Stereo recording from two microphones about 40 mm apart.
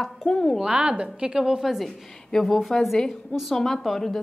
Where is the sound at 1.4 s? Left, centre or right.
Centre.